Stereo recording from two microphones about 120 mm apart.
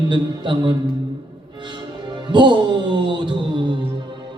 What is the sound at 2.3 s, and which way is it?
Music, 40° right (ahead or behind).